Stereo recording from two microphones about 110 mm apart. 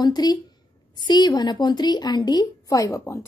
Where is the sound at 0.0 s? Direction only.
40° left (ahead or behind).